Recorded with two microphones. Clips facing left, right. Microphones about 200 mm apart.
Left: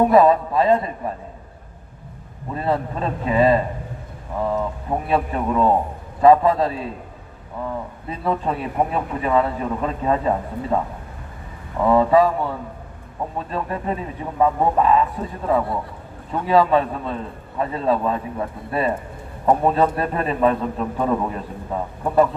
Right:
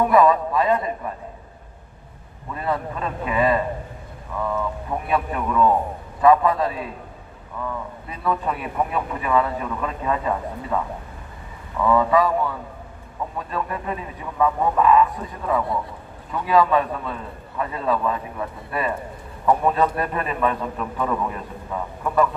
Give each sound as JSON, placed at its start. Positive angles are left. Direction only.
{"t": 0.0, "sound": "speech", "side_deg": 30}
{"t": 2.5, "sound": "speech", "side_deg": 30}
{"t": 11.8, "sound": "speech", "side_deg": 30}